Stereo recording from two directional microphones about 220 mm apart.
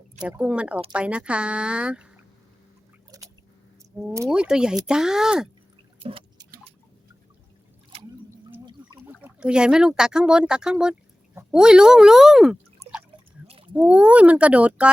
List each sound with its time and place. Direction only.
0.2 s speech: 5° right (ahead or behind)
3.1 s a sound: 15° right (ahead or behind)
4.3 s speech: 5° right (ahead or behind)
6.0 s a sound: 25° right (ahead or behind)
9.2 s speech: 5° right (ahead or behind)
13.7 s speech: 5° right (ahead or behind)